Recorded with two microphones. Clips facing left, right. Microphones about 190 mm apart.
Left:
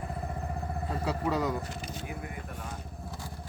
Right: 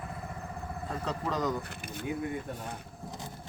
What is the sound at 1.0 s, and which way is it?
Speech, 10° left (ahead or behind).